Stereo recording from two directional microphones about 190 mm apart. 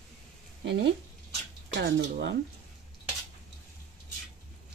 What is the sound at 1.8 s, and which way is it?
Speech, 65° right (ahead or behind).